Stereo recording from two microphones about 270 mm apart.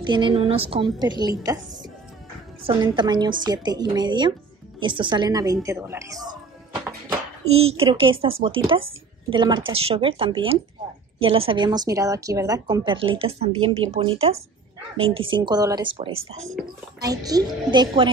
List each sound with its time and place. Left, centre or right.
0.0 s a woman's voice: centre
7.1 s a sound: right
7.8 s a woman's voice: centre